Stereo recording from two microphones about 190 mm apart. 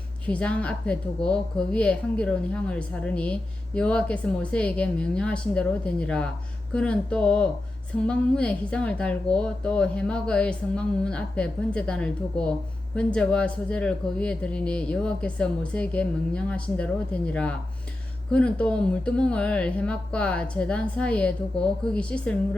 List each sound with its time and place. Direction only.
0.3 s a woman's voice: 5° left (ahead or behind)